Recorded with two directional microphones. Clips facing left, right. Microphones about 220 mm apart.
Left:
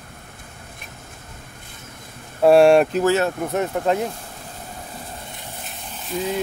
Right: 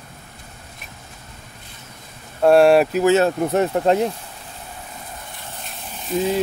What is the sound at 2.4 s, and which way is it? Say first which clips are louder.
Speech: even; centre (ahead or behind).